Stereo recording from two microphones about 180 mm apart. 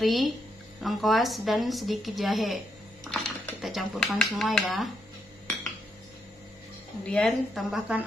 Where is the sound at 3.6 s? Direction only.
Centre (ahead or behind).